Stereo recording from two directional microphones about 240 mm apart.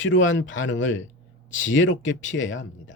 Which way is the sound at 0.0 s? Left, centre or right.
Left.